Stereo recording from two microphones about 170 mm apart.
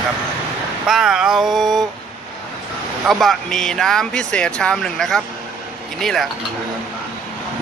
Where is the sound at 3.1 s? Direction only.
Centre (ahead or behind).